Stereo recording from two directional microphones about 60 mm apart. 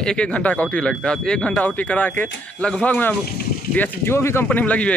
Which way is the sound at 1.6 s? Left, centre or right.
Left.